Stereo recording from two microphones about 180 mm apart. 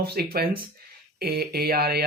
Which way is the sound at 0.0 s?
60° right (ahead or behind).